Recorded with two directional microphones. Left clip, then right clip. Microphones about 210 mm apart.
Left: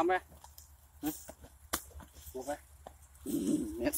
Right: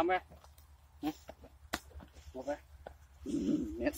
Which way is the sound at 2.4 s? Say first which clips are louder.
Even; 20° right (ahead or behind).